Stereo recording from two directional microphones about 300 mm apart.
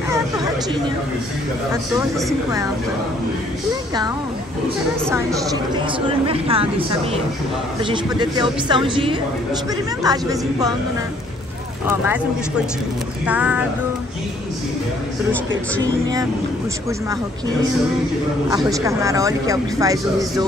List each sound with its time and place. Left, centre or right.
6.0 s speech: centre
11.9 s speech: centre
15.8 s speech: centre
18.7 s speech: centre